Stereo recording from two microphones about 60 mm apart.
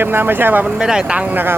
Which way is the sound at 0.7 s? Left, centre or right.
Centre.